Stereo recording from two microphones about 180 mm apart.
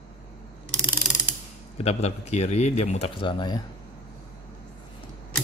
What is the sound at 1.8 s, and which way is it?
A man's voice, 35° left (ahead or behind).